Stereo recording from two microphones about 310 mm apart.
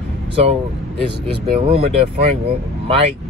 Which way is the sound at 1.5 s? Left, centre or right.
Centre.